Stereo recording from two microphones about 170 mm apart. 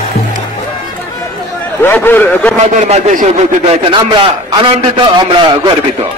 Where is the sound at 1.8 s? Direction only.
15° left (ahead or behind).